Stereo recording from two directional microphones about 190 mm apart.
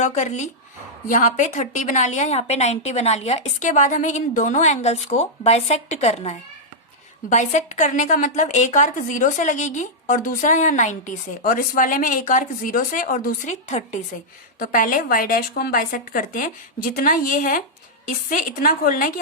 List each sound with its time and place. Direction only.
0.0 s a woman's voice: 40° left (ahead or behind)